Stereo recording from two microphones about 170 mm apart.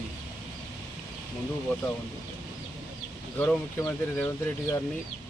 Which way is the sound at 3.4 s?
15° left (ahead or behind).